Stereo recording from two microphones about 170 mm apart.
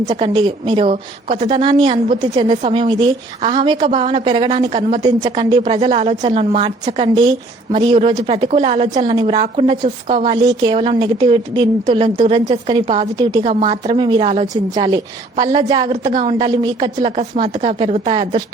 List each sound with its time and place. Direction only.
0.2 s a woman's voice: 25° right (ahead or behind)
9.0 s a woman's voice: 30° right (ahead or behind)
14.5 s a woman's voice: 25° right (ahead or behind)